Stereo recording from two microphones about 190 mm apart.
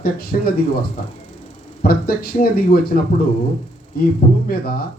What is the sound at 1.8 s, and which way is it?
Speech, 50° left (ahead or behind).